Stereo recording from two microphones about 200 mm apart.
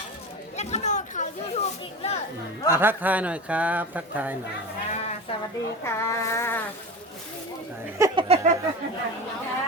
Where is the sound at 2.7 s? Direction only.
10° right (ahead or behind).